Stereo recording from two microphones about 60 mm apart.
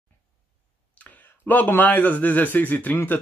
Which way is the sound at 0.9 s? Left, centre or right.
Left.